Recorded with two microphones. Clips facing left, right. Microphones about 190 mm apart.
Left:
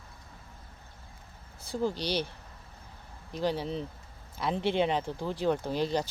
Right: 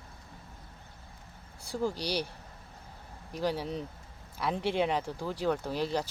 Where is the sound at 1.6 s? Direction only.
20° left (ahead or behind).